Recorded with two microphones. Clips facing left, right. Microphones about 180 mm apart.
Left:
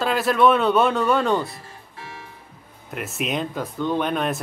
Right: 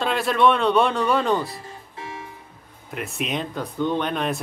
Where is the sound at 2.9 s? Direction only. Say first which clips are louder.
Left 1 dB; centre (ahead or behind).